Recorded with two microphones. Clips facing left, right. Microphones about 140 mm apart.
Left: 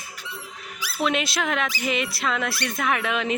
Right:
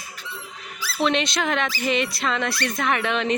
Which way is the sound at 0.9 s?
5° left (ahead or behind).